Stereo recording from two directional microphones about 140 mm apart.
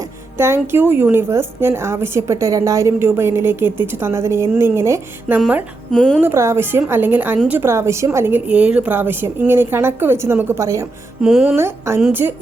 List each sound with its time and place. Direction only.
0.3 s a woman's voice: 15° right (ahead or behind)
5.9 s speech: 5° left (ahead or behind)
6.1 s a woman's voice: 15° right (ahead or behind)
11.2 s speech: 5° right (ahead or behind)
11.5 s a woman's voice: 15° right (ahead or behind)